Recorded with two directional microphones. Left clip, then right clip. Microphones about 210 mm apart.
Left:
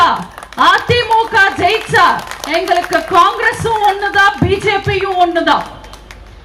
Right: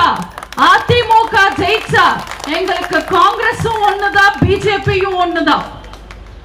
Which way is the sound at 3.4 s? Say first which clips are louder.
Left 1 dB; 5° left (ahead or behind).